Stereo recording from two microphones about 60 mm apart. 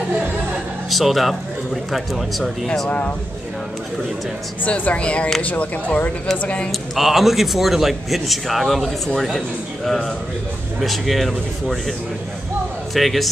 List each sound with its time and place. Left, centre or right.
0.8 s a man's voice: centre
4.6 s speech: left
6.7 s a man's voice: centre
12.9 s a man's voice: centre